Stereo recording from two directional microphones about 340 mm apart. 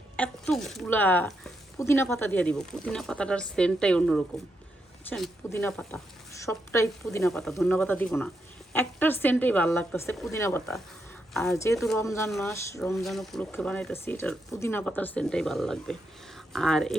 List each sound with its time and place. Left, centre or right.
0.2 s speech: centre